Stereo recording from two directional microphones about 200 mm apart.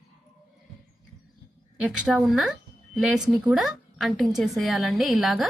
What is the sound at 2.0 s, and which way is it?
A woman's voice, centre (ahead or behind).